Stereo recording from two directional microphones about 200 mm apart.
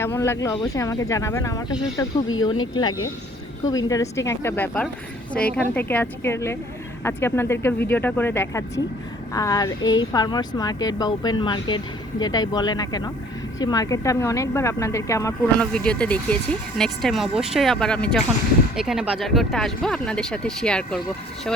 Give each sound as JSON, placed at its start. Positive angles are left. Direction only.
{"t": 0.0, "sound": "speech", "side_deg": 10}